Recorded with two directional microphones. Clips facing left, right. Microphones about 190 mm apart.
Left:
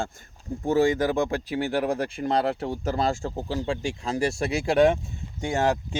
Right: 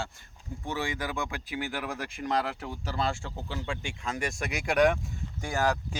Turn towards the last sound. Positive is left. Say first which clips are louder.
# left 4 dB
turn(degrees=25)  # may be behind; listen again after turning